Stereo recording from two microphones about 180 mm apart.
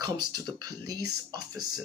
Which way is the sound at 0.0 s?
25° right (ahead or behind).